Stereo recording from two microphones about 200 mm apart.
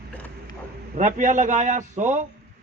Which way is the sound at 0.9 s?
40° right (ahead or behind).